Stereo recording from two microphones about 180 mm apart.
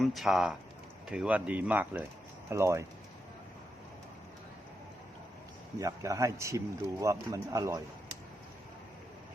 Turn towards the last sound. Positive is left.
turn(degrees=-20)  # may be behind; listen again after turning